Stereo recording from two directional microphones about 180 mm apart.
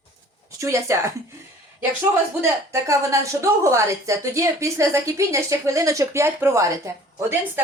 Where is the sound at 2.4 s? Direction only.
15° right (ahead or behind).